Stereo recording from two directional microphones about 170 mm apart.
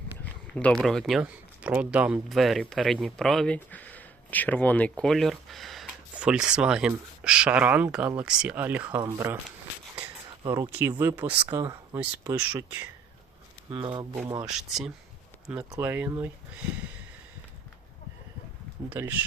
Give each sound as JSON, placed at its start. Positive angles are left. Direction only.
{"t": 0.5, "sound": "speech", "side_deg": 5}
{"t": 10.5, "sound": "speech", "side_deg": -15}
{"t": 12.4, "sound": "speech", "side_deg": -10}
{"t": 13.7, "sound": "speech", "side_deg": -30}
{"t": 14.4, "sound": "speech", "side_deg": 0}
{"t": 15.5, "sound": "speech", "side_deg": -15}
{"t": 18.9, "sound": "speech", "side_deg": -10}